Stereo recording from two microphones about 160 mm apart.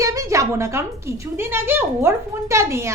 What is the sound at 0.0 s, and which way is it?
A woman's voice, 20° right (ahead or behind).